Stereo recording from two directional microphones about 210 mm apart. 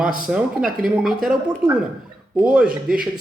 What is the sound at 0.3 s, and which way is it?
Speech, 5° right (ahead or behind).